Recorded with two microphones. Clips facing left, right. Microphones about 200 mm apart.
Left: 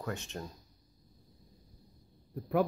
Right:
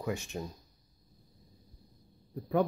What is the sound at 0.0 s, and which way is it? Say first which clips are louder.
Speech: right 3 dB; 10° right (ahead or behind).